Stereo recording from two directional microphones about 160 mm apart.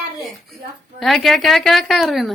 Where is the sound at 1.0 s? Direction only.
Centre (ahead or behind).